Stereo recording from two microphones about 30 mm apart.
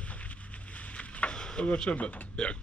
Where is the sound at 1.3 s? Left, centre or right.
Left.